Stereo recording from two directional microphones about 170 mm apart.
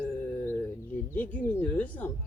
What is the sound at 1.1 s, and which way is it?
Speech, 10° left (ahead or behind).